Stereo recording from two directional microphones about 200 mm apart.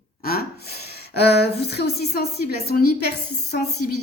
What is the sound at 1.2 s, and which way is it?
A woman's voice, 55° left (ahead or behind).